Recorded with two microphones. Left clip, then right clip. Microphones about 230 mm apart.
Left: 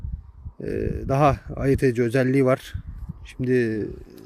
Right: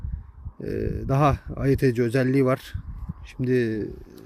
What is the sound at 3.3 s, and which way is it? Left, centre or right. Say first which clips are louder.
Speech: left 2 dB; centre.